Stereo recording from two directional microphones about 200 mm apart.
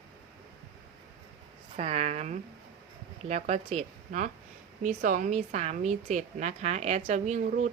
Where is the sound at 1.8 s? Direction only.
30° right (ahead or behind).